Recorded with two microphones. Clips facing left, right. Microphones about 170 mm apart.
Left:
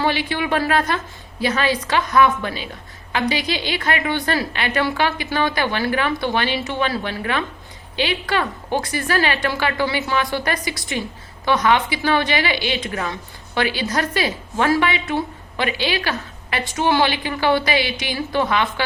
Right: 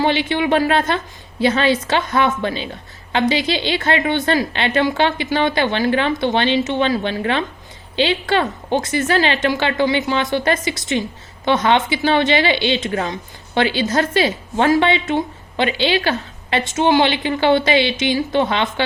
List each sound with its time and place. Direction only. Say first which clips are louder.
0.0 s a woman's voice: right 4 dB; 25° right (ahead or behind)